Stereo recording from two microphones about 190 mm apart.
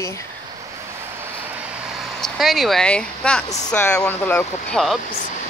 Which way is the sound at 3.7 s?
5° left (ahead or behind).